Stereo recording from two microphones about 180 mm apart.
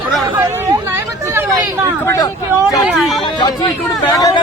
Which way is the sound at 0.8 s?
15° right (ahead or behind).